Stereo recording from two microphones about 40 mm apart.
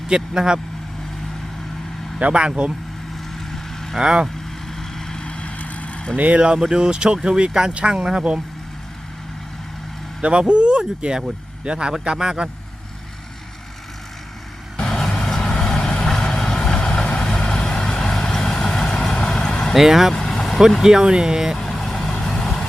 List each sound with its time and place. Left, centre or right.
0.1 s speech: centre
2.1 s speech: right
3.5 s vehicle: centre
4.0 s speech: right
4.7 s vehicle: centre
5.2 s vehicle: left
6.1 s speech: right
6.6 s speech: centre
10.2 s speech: right
14.8 s vehicle: left
19.7 s speech: centre
20.1 s vehicle: centre
20.8 s speech: centre
21.6 s vehicle: centre